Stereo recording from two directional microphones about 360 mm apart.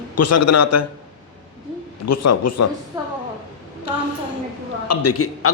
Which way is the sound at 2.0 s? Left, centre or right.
Left.